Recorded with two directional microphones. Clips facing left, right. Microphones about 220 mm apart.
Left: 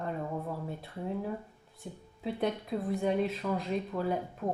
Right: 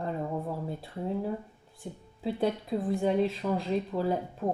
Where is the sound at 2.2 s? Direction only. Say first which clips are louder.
Right 3 dB; 30° right (ahead or behind).